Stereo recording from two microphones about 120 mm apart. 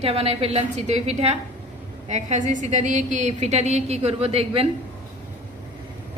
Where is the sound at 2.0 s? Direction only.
75° right (ahead or behind); by 4.7 s 55° right (ahead or behind).